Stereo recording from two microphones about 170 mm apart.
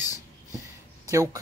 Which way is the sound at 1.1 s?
15° right (ahead or behind).